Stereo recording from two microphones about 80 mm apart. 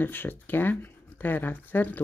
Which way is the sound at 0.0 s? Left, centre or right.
Left.